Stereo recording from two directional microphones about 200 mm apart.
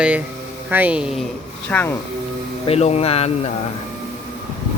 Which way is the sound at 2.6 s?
30° left (ahead or behind).